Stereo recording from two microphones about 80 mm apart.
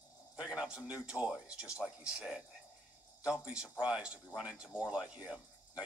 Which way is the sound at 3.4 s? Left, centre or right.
Centre.